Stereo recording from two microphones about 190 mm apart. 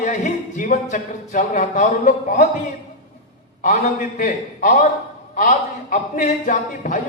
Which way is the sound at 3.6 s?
40° left (ahead or behind).